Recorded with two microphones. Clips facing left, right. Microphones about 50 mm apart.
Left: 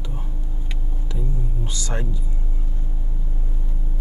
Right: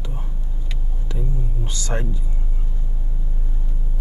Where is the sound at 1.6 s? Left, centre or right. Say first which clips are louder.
Right 3 dB; right.